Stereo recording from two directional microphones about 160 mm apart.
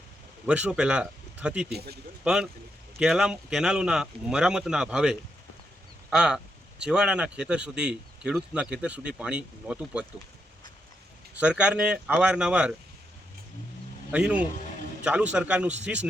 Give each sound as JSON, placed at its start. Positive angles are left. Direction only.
{"t": 0.4, "sound": "speech", "side_deg": -5}
{"t": 1.7, "sound": "speech", "side_deg": -80}
{"t": 2.2, "sound": "speech", "side_deg": -5}
{"t": 11.3, "sound": "speech", "side_deg": -5}
{"t": 14.1, "sound": "speech", "side_deg": -10}